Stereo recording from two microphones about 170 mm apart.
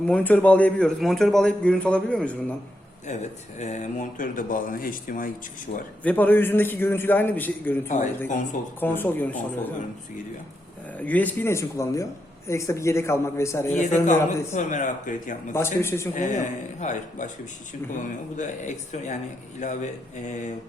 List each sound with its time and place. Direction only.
0.1 s speech: 10° left (ahead or behind)
3.1 s speech: 40° left (ahead or behind)
6.0 s a man's voice: 10° left (ahead or behind)
8.8 s a man's voice: 10° left (ahead or behind)
11.0 s a man's voice: 10° left (ahead or behind)
13.7 s speech: 45° left (ahead or behind)
15.5 s a man's voice: 15° left (ahead or behind)
16.1 s speech: 45° left (ahead or behind)